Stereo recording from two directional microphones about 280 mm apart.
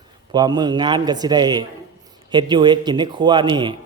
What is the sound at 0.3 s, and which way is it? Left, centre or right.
Speech, centre.